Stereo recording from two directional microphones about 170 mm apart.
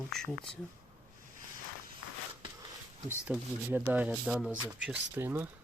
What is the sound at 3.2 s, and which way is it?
Speech, 5° right (ahead or behind).